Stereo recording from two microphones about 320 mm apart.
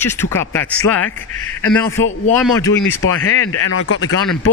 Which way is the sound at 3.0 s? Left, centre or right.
Left.